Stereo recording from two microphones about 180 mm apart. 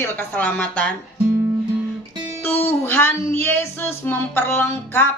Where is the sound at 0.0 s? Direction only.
10° left (ahead or behind).